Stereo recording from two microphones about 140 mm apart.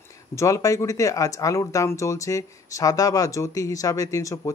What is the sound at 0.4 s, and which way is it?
Speech, 25° left (ahead or behind).